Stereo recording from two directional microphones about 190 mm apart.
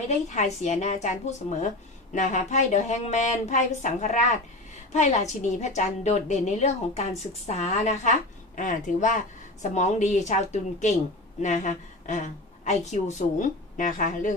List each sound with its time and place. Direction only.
0.1 s a woman's voice: 40° left (ahead or behind)